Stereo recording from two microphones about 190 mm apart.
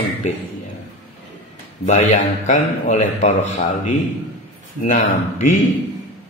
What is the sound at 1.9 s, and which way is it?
A man's voice, 40° left (ahead or behind).